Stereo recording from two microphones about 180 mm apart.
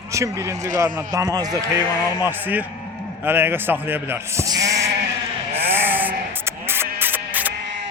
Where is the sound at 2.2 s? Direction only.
10° right (ahead or behind).